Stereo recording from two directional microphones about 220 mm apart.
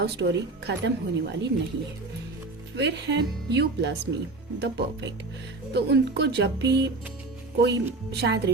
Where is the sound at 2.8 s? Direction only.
50° right (ahead or behind).